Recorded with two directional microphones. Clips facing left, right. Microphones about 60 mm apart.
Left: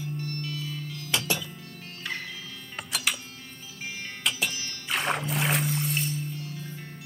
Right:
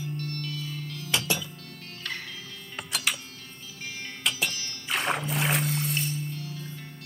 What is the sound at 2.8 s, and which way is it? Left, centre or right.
Music, centre.